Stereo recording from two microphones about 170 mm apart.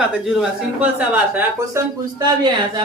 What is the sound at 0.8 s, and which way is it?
A man's voice, 10° right (ahead or behind).